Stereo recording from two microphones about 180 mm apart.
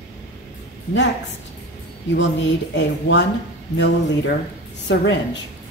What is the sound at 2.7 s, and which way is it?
Speech, 80° left.